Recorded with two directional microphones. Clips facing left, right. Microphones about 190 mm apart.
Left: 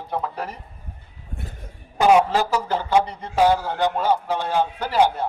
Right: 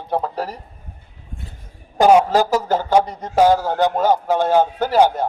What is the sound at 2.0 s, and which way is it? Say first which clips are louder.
A man's voice: right 4 dB; 40° right (ahead or behind).